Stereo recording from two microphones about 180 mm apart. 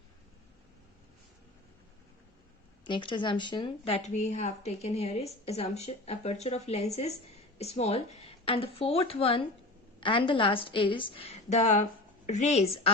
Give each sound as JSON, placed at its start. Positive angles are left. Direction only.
{"t": 2.8, "sound": "a woman's voice", "side_deg": 25}